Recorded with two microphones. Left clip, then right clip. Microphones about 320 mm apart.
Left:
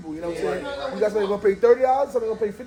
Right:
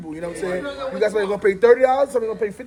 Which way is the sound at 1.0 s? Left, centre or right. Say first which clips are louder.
Right 2 dB; right.